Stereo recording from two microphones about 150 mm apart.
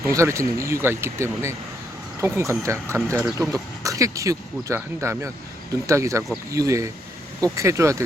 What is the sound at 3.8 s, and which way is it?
Speech, 20° right (ahead or behind).